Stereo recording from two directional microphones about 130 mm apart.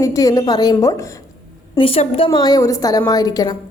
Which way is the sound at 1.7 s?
45° left (ahead or behind).